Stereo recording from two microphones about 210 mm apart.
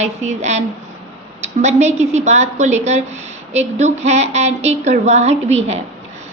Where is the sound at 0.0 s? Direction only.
35° right (ahead or behind).